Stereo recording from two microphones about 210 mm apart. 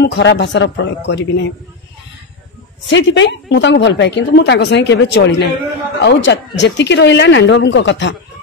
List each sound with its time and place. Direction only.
0.0 s speech: 55° left (ahead or behind)
2.9 s speech: 60° left (ahead or behind)